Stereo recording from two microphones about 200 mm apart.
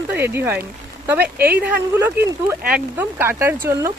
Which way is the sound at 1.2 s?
50° right (ahead or behind).